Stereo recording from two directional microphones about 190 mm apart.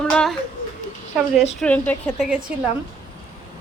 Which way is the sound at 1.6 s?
10° left (ahead or behind).